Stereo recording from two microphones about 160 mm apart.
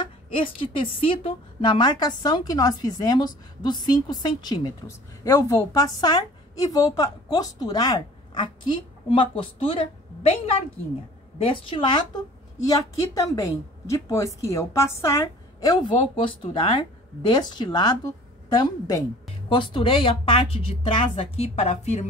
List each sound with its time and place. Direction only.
0.0 s a woman's voice: 35° left (ahead or behind)
9.1 s a woman's voice: 35° left (ahead or behind)
19.5 s a woman's voice: 35° left (ahead or behind)